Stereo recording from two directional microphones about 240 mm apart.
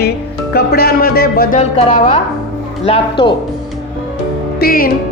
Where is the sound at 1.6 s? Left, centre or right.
Left.